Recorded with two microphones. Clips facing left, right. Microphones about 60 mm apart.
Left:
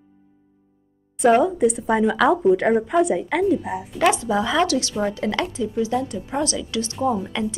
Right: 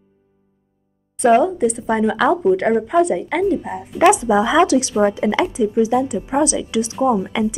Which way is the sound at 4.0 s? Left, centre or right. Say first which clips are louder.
Right 6 dB; centre.